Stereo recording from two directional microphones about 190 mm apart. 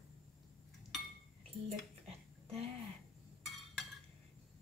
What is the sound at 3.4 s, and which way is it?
Chink, centre (ahead or behind).